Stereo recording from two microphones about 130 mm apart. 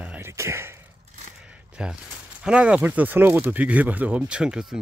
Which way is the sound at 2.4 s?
10° right (ahead or behind).